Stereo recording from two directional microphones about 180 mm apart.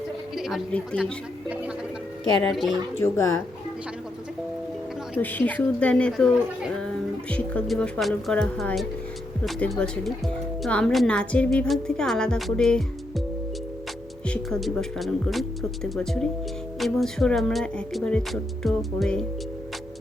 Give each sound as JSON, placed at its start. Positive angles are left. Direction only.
{"t": 0.3, "sound": "speech", "side_deg": 0}
{"t": 2.4, "sound": "a woman's voice", "side_deg": 0}
{"t": 3.0, "sound": "speech", "side_deg": 15}
{"t": 5.1, "sound": "a woman's voice", "side_deg": 10}
{"t": 14.3, "sound": "a woman's voice", "side_deg": 5}